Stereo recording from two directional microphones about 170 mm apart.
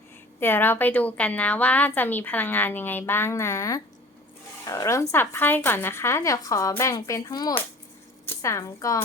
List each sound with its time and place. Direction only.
0.3 s a woman's voice: 10° left (ahead or behind)